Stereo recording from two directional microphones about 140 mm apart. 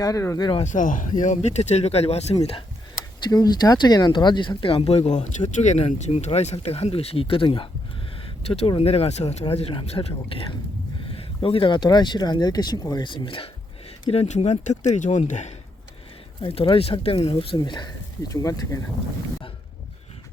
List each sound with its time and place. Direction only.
0.0 s speech: 25° left (ahead or behind)
0.6 s speech: 65° left (ahead or behind)
3.2 s speech: 30° left (ahead or behind)
8.4 s speech: 45° left (ahead or behind)
14.1 s speech: 50° left (ahead or behind)
16.4 s speech: 40° left (ahead or behind); by 18.8 s 25° left (ahead or behind)